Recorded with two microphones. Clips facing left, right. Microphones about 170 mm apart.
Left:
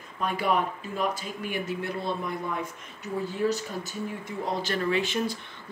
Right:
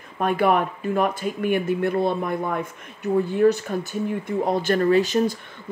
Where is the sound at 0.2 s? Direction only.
55° right (ahead or behind).